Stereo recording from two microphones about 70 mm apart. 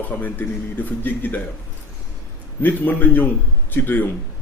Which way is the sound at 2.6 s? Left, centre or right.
Left.